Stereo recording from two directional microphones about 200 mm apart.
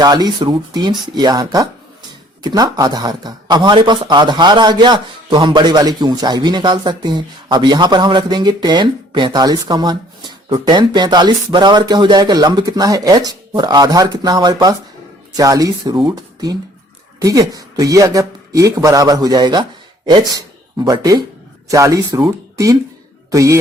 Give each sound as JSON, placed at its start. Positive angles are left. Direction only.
{"t": 0.0, "sound": "speech", "side_deg": -20}